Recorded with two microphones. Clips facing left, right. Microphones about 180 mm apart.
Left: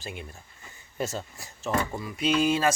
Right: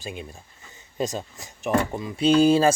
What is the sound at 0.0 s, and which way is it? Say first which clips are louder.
Speech: right 4 dB; 15° right (ahead or behind).